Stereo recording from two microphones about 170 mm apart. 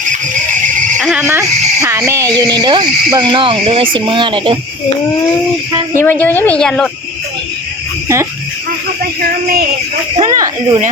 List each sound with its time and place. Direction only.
0.9 s speech: centre (ahead or behind)
1.2 s speech: 15° right (ahead or behind)
6.0 s speech: 10° left (ahead or behind)
8.0 s speech: 15° right (ahead or behind)
10.2 s speech: 25° right (ahead or behind)